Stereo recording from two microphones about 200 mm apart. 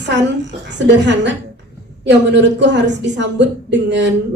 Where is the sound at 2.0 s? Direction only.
60° right (ahead or behind).